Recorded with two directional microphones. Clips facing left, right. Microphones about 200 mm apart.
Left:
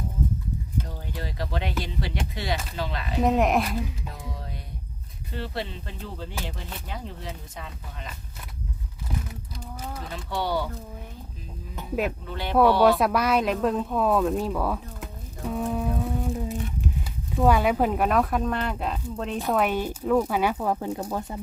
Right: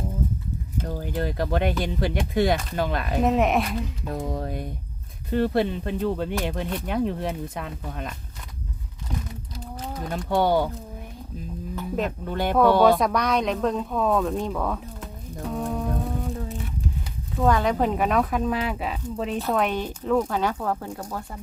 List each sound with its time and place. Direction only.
0.8 s speech: 50° right (ahead or behind)
3.2 s speech: centre (ahead or behind)
4.1 s speech: 50° right (ahead or behind)
10.1 s speech: 50° right (ahead or behind)
12.2 s speech: 50° right (ahead or behind)
13.0 s speech: 5° left (ahead or behind)
15.6 s humming: 5° left (ahead or behind)
17.3 s speech: 10° left (ahead or behind)